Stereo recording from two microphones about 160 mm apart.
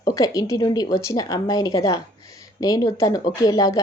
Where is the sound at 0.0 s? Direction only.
20° left (ahead or behind).